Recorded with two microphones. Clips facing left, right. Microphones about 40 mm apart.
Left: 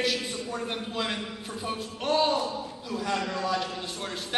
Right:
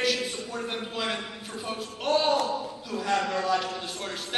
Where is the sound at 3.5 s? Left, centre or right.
Right.